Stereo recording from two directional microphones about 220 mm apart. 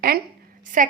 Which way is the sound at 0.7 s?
35° right (ahead or behind).